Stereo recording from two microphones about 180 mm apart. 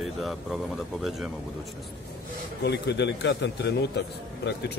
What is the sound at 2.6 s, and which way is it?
Speech, 70° left (ahead or behind).